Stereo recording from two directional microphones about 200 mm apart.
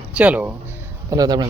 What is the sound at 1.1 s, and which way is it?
Speech, 20° right (ahead or behind).